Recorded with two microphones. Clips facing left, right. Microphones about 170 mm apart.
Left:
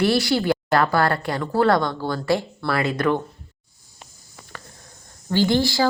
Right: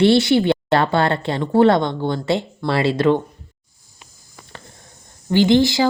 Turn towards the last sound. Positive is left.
turn(degrees=-20)  # may be behind; listen again after turning